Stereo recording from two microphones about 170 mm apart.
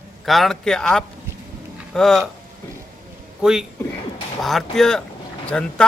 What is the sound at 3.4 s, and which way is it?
Speech, 5° right (ahead or behind).